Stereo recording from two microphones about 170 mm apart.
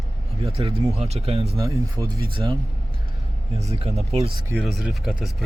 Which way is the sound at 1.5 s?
20° right (ahead or behind).